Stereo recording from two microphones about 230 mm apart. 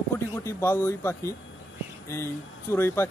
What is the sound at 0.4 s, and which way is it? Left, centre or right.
Speech, centre.